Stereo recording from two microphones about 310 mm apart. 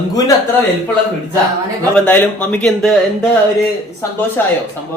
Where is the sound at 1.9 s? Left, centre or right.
Centre.